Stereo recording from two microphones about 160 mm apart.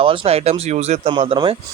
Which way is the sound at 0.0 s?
35° right (ahead or behind).